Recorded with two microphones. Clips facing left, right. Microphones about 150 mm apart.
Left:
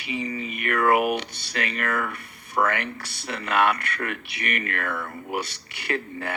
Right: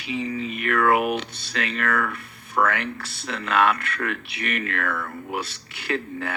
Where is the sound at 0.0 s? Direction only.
60° left (ahead or behind).